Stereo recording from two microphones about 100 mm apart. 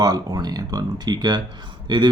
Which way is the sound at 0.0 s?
45° right (ahead or behind).